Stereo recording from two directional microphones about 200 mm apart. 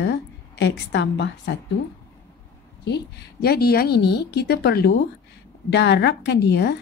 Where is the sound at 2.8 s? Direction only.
55° left (ahead or behind).